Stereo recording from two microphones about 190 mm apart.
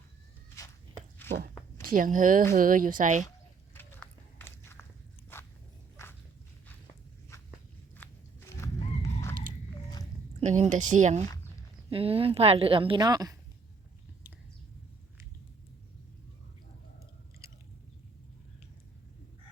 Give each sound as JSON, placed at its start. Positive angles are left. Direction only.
{"t": 1.2, "sound": "a sound", "side_deg": 10}
{"t": 1.8, "sound": "speech", "side_deg": -45}
{"t": 3.8, "sound": "walk", "side_deg": 10}
{"t": 6.0, "sound": "dog", "side_deg": 15}
{"t": 7.9, "sound": "walk", "side_deg": 10}
{"t": 10.4, "sound": "a woman's voice", "side_deg": -40}